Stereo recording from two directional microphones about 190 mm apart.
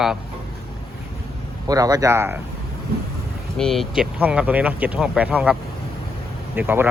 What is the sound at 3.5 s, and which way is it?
Speech, 5° left (ahead or behind).